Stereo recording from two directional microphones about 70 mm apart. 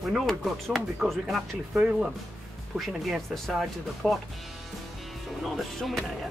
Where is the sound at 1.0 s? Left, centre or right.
Centre.